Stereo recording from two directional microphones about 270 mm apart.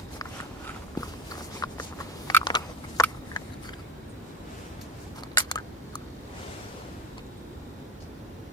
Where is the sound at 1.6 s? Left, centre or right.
Centre.